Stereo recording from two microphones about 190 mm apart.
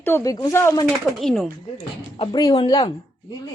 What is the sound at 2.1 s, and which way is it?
Speech, 25° left (ahead or behind).